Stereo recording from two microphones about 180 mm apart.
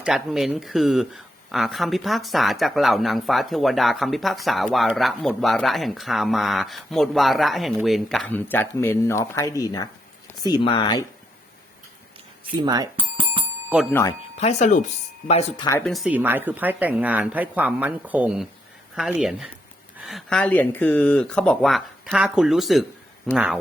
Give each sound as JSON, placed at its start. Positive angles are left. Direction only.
{"t": 0.0, "sound": "speech", "side_deg": 0}
{"t": 12.5, "sound": "speech", "side_deg": -25}
{"t": 14.3, "sound": "speech", "side_deg": 40}
{"t": 15.8, "sound": "speech", "side_deg": 0}